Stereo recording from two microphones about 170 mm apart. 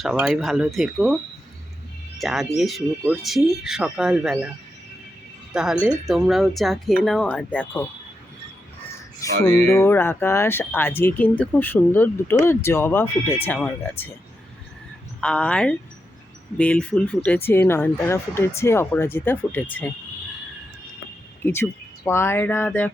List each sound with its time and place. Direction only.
0.0 s speech: centre (ahead or behind)
2.2 s speech: centre (ahead or behind)
6.1 s speech: centre (ahead or behind)
9.2 s speech: 20° left (ahead or behind)
15.2 s speech: 5° left (ahead or behind)
21.4 s speech: 15° left (ahead or behind)